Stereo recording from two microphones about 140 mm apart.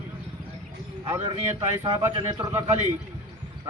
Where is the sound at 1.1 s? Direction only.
25° right (ahead or behind).